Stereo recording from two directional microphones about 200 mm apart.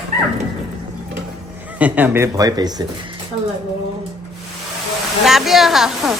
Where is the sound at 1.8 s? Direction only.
10° right (ahead or behind).